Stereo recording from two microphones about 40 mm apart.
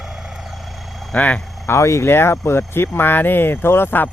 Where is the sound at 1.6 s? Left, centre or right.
Left.